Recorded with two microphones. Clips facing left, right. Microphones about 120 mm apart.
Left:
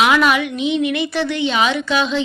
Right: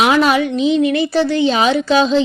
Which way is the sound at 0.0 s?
35° right (ahead or behind).